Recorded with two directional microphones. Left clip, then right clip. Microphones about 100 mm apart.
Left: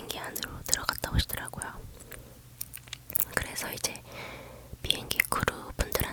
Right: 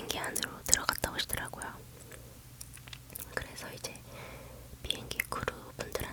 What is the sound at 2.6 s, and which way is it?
Whispering, 20° left (ahead or behind).